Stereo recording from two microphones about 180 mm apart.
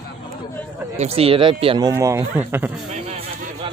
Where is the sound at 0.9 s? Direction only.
35° right (ahead or behind).